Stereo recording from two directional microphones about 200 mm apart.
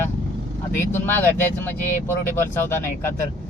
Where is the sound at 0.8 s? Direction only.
10° left (ahead or behind).